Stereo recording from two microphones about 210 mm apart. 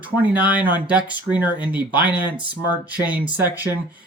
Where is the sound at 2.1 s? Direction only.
20° left (ahead or behind).